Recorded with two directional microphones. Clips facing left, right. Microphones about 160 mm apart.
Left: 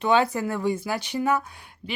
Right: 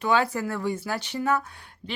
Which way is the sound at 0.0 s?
20° left (ahead or behind).